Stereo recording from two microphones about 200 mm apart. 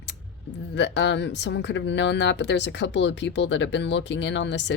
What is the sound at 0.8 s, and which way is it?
Speech, 60° left (ahead or behind).